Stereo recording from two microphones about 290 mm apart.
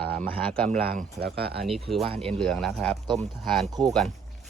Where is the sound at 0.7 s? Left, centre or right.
Right.